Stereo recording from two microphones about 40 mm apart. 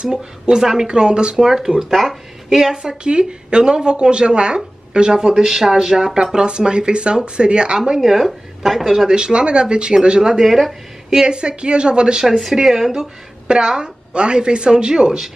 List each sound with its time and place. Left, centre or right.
0.0 s speech: centre
2.7 s a woman's voice: right
8.0 s speech: centre
9.1 s a woman's voice: right
10.4 s speech: centre
11.1 s a woman's voice: centre
12.3 s speech: centre
13.5 s a woman's voice: centre